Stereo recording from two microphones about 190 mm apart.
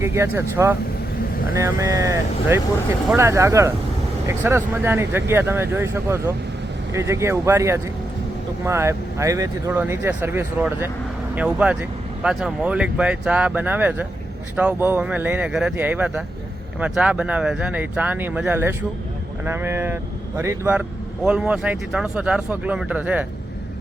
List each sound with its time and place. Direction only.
0.0 s speech: 15° right (ahead or behind)